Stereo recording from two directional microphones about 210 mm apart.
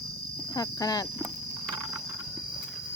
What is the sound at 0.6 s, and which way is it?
Speech, 15° left (ahead or behind).